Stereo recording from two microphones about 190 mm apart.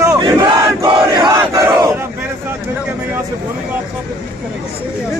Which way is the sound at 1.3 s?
15° right (ahead or behind).